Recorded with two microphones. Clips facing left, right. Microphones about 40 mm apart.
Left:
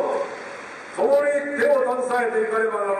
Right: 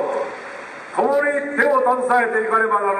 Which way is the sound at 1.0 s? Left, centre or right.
Right.